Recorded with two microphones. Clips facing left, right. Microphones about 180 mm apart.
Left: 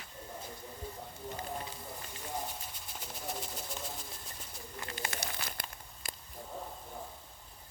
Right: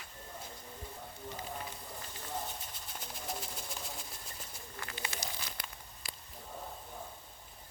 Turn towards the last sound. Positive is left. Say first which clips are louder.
# left 2 dB
turn(degrees=50)  # may be behind; listen again after turning